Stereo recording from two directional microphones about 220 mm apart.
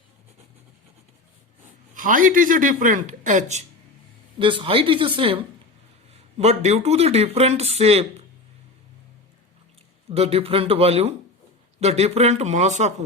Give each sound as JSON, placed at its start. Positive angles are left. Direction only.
{"t": 2.0, "sound": "speech", "side_deg": -35}
{"t": 10.1, "sound": "speech", "side_deg": -25}